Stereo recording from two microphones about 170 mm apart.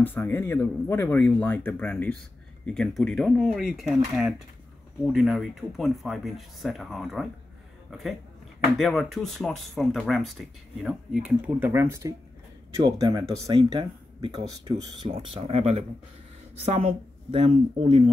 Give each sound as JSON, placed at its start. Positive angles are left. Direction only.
{"t": 0.0, "sound": "speech", "side_deg": 10}